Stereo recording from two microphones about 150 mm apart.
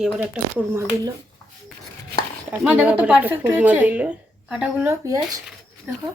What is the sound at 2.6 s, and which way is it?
Speech, 10° right (ahead or behind).